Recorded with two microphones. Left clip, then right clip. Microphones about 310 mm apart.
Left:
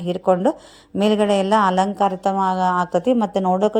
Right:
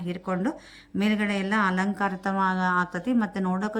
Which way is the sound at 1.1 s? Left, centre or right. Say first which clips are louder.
Left 11 dB; centre.